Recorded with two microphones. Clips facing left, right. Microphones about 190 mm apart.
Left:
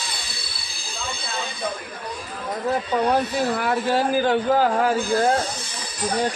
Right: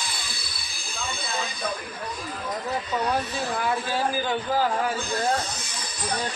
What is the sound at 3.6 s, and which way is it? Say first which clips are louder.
A man's voice: left 5 dB; 70° left (ahead or behind).